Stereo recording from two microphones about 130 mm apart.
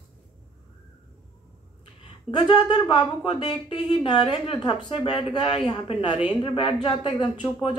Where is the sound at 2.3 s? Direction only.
35° left (ahead or behind).